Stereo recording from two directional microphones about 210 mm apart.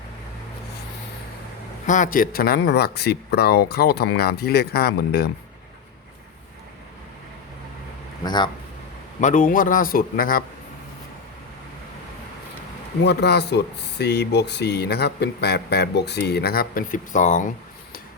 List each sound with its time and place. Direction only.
1.9 s speech: 40° left (ahead or behind)
8.2 s speech: 20° left (ahead or behind)
9.2 s speech: 40° left (ahead or behind)
13.1 s speech: 50° left (ahead or behind)